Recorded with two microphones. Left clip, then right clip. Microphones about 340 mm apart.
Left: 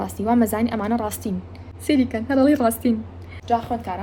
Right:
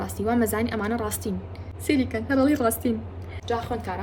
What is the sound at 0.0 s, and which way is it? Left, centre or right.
A woman's voice, centre.